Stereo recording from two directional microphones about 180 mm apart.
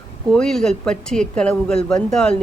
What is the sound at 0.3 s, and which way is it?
A woman's voice, centre (ahead or behind).